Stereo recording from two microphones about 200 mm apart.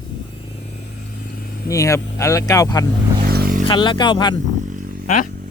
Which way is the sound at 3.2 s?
50° right (ahead or behind).